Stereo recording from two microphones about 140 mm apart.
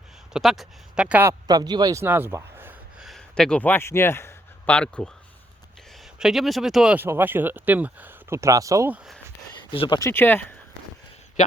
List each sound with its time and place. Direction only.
0.3 s speech: centre (ahead or behind)
1.3 s speech: 30° right (ahead or behind)
2.0 s speech: 15° right (ahead or behind)
3.0 s speech: centre (ahead or behind)
6.1 s speech: 5° right (ahead or behind); by 8.9 s 25° right (ahead or behind)
9.7 s speech: 40° left (ahead or behind)
10.0 s speech: 15° left (ahead or behind)